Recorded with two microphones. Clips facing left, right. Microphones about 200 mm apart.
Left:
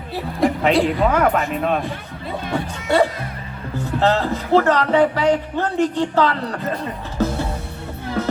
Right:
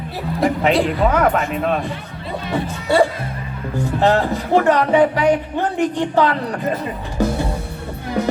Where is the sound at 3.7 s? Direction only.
15° right (ahead or behind).